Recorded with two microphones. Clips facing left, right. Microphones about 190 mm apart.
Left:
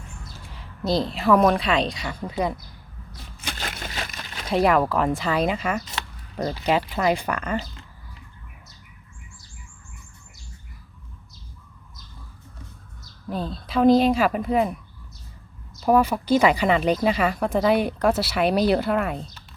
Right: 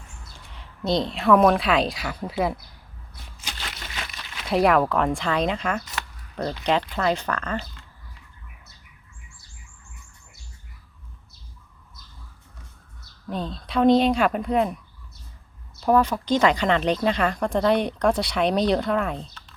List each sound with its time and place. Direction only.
0.3 s a woman's voice: centre (ahead or behind)
3.3 s a sound: 50° left (ahead or behind)
4.4 s speech: centre (ahead or behind)
13.2 s speech: 5° left (ahead or behind)
15.8 s speech: 10° left (ahead or behind)